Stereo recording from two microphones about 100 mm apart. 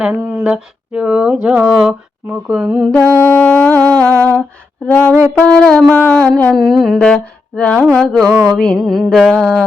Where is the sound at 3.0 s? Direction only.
25° left (ahead or behind).